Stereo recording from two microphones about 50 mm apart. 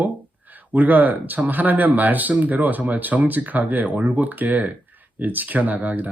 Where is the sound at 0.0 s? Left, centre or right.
Right.